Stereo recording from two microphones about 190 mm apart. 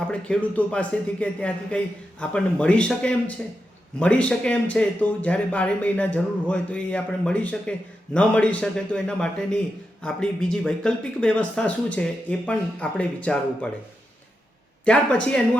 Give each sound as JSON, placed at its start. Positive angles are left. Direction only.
{"t": 0.1, "sound": "speech", "side_deg": 5}
{"t": 14.8, "sound": "speech", "side_deg": 5}